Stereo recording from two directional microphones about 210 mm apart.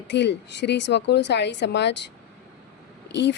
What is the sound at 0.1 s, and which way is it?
A woman's voice, 55° left (ahead or behind).